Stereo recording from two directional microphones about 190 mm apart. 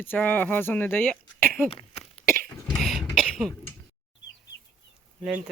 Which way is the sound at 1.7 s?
30° left (ahead or behind).